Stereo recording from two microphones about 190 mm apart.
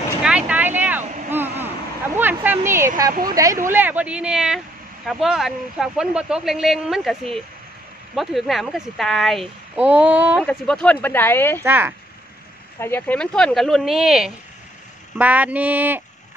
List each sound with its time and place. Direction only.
0.2 s vehicle: 5° right (ahead or behind)
2.1 s speech: 10° right (ahead or behind)
3.1 s speech: 50° right (ahead or behind)
3.7 s speech: 10° right (ahead or behind)
10.4 s speech: 5° left (ahead or behind)
11.6 s speech: 10° right (ahead or behind)
12.8 s speech: 10° left (ahead or behind); by 16.0 s 10° right (ahead or behind)